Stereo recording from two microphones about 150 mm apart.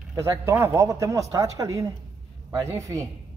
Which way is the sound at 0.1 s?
20° right (ahead or behind).